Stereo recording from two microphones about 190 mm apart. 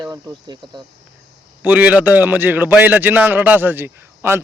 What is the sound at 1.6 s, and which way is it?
A man's voice, 10° right (ahead or behind).